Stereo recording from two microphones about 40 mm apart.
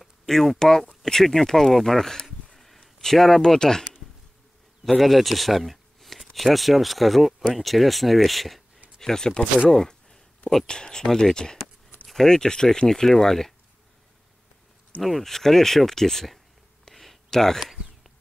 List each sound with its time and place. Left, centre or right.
0.0 s speech: centre
2.2 s a sound: centre
3.0 s speech: centre
3.4 s speech: centre
4.8 s speech: centre
9.0 s speech: centre
9.7 s a sound: centre
10.7 s speech: centre
15.0 s speech: centre
16.9 s a sound: centre